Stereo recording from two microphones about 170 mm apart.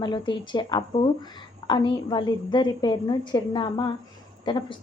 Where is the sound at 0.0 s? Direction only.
25° left (ahead or behind).